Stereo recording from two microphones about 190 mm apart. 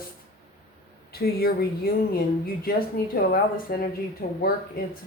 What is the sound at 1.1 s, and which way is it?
Speech, 55° left (ahead or behind).